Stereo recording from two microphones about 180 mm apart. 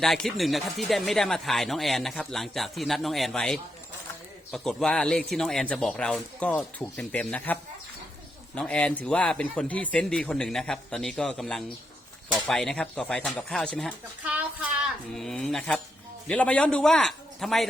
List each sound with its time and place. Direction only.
0.0 s speech: centre (ahead or behind)
14.3 s a sound: 10° right (ahead or behind)
15.1 s speech: centre (ahead or behind)